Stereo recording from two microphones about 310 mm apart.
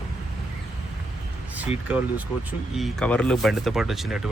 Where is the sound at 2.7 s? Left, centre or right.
Centre.